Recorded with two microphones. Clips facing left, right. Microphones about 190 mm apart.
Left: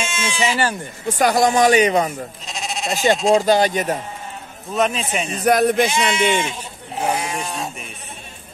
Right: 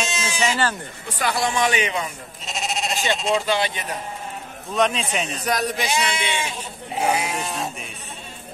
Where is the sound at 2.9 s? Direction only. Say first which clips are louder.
Left 8 dB; 40° left (ahead or behind).